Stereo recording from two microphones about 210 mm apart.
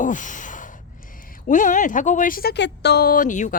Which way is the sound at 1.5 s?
40° left (ahead or behind).